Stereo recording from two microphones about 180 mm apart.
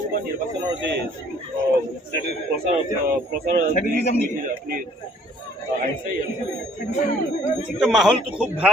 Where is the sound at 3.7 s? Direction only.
55° left (ahead or behind).